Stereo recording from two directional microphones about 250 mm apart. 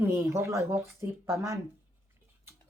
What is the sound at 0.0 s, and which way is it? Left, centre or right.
A woman's voice, centre.